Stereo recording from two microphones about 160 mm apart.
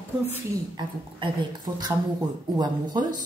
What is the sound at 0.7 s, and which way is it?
A woman's voice, 30° right (ahead or behind).